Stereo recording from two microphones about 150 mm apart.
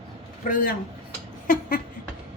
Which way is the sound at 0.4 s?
65° left (ahead or behind).